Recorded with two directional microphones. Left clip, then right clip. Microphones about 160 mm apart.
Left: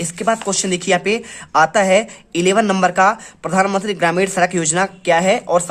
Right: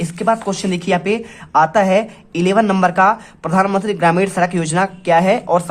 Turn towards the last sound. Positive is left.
turn(degrees=10)  # may be behind; listen again after turning